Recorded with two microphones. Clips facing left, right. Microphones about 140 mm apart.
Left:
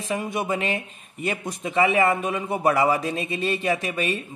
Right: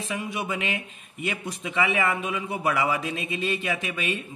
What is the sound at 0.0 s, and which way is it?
A man's voice, 40° left (ahead or behind).